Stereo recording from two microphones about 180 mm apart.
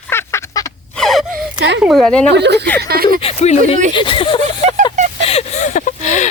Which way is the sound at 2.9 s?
55° right (ahead or behind).